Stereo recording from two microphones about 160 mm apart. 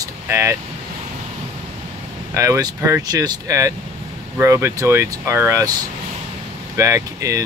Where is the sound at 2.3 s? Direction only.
20° right (ahead or behind).